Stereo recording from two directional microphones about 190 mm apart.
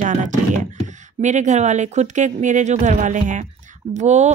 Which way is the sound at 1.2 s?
40° right (ahead or behind).